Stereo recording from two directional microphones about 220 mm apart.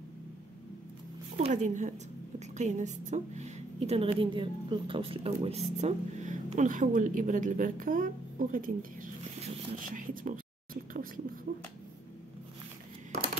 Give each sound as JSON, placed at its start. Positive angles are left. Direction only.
{"t": 1.4, "sound": "a woman's voice", "side_deg": -35}